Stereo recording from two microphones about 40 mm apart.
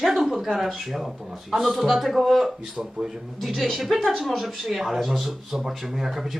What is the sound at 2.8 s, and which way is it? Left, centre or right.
Speech, right.